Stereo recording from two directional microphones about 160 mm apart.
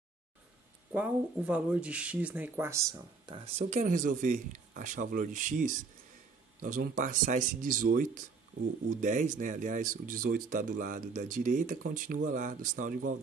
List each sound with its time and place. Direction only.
0.9 s speech: 10° right (ahead or behind)
3.3 s speech: 35° right (ahead or behind)
3.8 s speech: 55° right (ahead or behind)